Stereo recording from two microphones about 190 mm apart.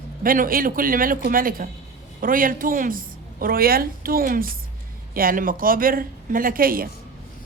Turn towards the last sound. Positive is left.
turn(degrees=-50)  # may be behind; listen again after turning